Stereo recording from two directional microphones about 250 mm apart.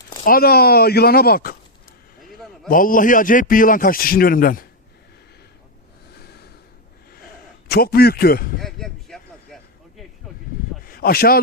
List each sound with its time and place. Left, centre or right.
0.3 s a man's voice: left
2.6 s a man's voice: left
6.1 s snort: left
7.7 s a man's voice: left
8.6 s a sound: centre
10.8 s a sound: left